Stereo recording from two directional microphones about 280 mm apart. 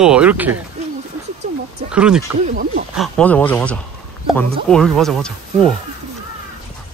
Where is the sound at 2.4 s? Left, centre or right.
Right.